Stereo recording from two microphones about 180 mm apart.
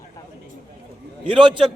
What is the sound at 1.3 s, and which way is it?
Speech, 25° right (ahead or behind).